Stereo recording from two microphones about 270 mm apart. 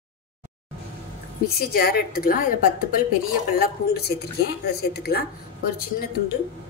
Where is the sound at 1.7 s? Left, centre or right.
Left.